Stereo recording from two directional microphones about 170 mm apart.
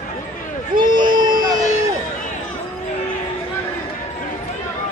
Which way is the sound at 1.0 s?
25° right (ahead or behind).